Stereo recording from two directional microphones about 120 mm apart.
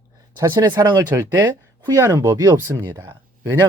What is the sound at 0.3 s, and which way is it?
Speech, 25° right (ahead or behind).